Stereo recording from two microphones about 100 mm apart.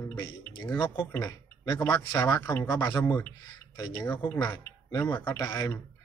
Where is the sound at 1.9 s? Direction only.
50° left (ahead or behind).